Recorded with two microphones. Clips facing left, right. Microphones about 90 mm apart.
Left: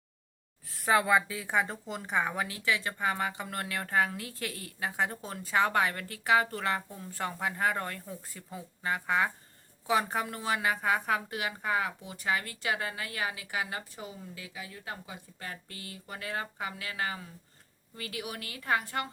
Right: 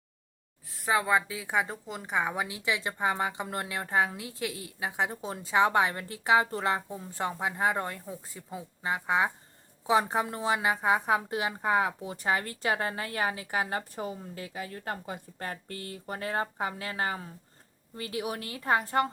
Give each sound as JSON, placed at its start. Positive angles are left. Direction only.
{"t": 0.9, "sound": "a woman's voice", "side_deg": -5}